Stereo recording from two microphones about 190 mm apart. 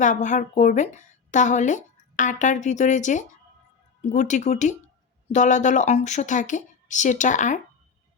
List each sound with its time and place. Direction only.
0.0 s a woman's voice: 40° left (ahead or behind)